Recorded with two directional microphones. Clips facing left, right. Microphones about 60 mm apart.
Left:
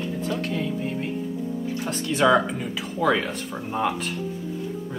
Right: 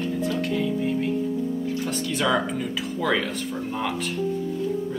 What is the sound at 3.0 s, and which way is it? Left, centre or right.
Speech, centre.